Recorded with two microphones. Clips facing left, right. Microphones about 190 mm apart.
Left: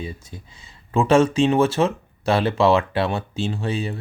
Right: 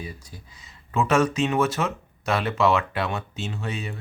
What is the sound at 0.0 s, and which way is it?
Speech, 25° left (ahead or behind).